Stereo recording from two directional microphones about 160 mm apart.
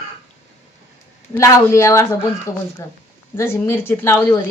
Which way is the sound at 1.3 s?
20° left (ahead or behind).